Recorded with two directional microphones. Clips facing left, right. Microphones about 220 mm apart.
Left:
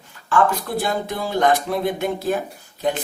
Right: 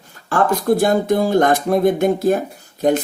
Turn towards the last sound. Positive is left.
turn(degrees=-45)  # may be behind; listen again after turning